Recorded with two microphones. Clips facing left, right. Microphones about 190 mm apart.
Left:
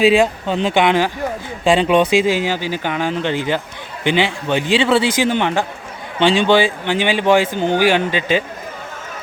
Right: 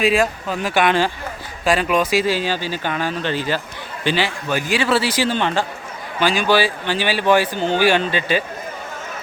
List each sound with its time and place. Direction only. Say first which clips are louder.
0.0 s speech: left 4 dB; 25° left (ahead or behind)